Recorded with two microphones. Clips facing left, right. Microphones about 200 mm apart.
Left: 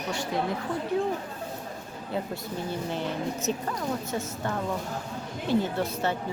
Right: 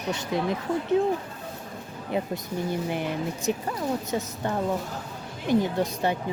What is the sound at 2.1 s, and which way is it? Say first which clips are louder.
A woman's voice: right 3 dB; 15° right (ahead or behind).